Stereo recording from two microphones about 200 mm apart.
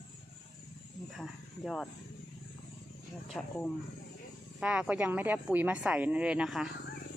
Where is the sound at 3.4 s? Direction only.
5° left (ahead or behind).